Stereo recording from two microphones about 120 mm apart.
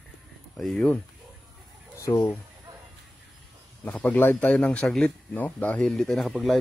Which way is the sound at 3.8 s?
15° left (ahead or behind).